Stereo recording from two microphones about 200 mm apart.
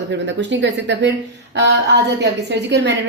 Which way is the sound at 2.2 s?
60° right (ahead or behind).